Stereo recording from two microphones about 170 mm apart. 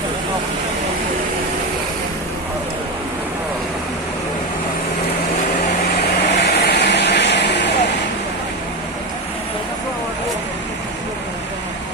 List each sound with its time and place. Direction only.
5.9 s vehicle: 80° left